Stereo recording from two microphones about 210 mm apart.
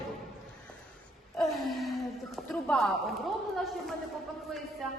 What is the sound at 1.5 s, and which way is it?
A woman's voice, centre (ahead or behind).